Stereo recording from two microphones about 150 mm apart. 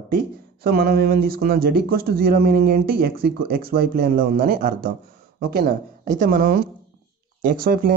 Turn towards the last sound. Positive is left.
turn(degrees=-70)  # may be behind; listen again after turning